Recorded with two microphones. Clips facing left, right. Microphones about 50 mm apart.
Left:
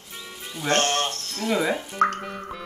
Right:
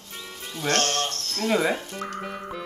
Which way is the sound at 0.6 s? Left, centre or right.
Left.